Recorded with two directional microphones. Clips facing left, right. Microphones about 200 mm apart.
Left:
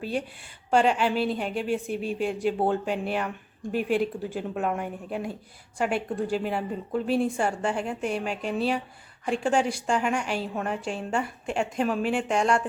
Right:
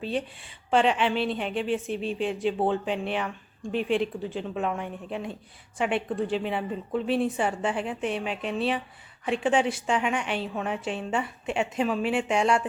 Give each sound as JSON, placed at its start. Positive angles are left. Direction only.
{"t": 0.0, "sound": "a woman's voice", "side_deg": 5}